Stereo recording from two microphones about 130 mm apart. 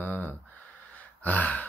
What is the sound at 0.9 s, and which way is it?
Gasp, 10° left (ahead or behind).